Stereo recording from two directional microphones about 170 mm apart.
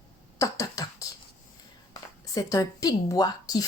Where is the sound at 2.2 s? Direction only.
20° left (ahead or behind).